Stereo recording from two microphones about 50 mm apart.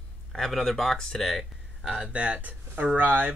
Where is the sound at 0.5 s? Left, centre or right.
Centre.